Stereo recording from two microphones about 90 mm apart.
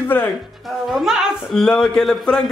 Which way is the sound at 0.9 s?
5° right (ahead or behind).